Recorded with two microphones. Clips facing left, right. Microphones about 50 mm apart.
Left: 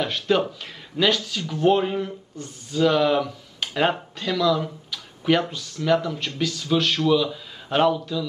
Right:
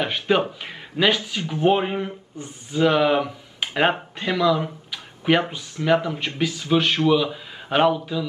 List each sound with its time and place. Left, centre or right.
0.0 s speech: right